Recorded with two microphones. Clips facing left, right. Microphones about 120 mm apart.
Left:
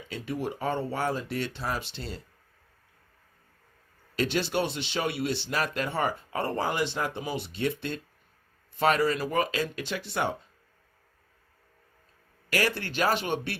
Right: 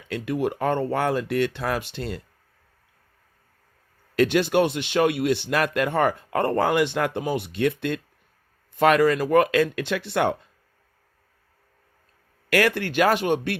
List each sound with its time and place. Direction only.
0.1 s speech: 60° right (ahead or behind)
4.1 s speech: 55° right (ahead or behind)
12.5 s speech: 65° right (ahead or behind)